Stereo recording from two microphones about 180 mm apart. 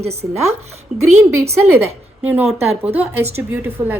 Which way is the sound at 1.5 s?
15° right (ahead or behind).